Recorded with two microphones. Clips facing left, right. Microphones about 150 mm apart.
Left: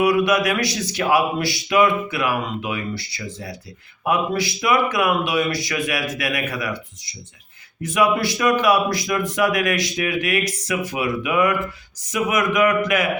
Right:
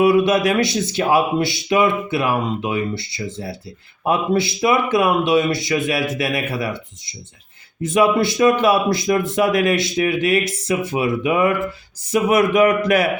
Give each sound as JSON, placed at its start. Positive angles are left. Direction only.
{"t": 0.0, "sound": "speech", "side_deg": -25}